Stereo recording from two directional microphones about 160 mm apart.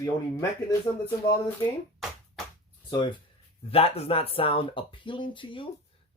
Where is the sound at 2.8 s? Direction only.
30° left (ahead or behind).